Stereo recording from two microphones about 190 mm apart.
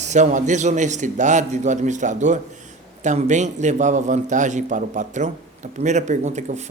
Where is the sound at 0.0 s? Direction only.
40° right (ahead or behind).